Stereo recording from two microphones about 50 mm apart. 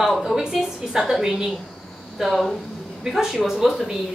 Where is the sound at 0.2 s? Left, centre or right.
Centre.